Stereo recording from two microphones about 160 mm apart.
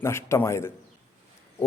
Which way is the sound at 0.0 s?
15° left (ahead or behind).